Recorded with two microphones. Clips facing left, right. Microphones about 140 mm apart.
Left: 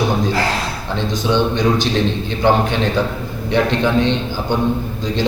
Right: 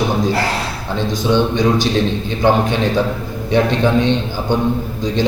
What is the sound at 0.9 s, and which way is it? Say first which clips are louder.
A man's voice: right 2 dB; 15° right (ahead or behind).